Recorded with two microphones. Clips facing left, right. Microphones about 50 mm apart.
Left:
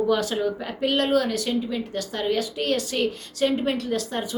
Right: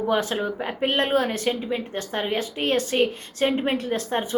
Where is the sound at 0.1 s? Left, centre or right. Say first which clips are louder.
Left 1 dB; right.